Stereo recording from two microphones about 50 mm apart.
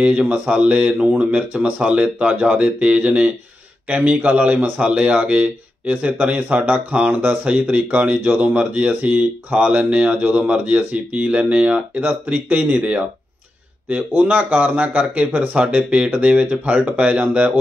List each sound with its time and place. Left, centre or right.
0.0 s speech: right
14.1 s speech: right